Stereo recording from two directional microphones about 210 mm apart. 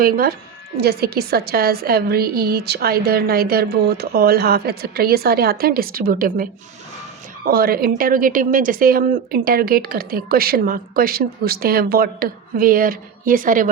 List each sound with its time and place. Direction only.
0.0 s a woman's voice: 45° right (ahead or behind)